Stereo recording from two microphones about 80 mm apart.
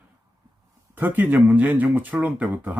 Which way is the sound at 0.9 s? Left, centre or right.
Right.